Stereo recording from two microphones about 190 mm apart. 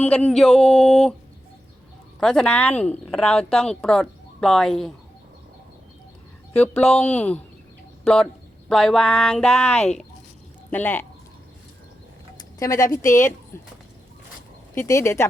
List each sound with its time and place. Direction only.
0.0 s speech: 5° left (ahead or behind)
2.2 s speech: 5° left (ahead or behind)
6.6 s speech: 5° left (ahead or behind)
12.5 s speech: 15° left (ahead or behind)
14.8 s speech: 15° left (ahead or behind)